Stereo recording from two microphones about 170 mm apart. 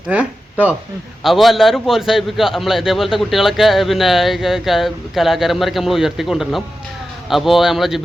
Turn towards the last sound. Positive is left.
turn(degrees=0)  # may be behind; listen again after turning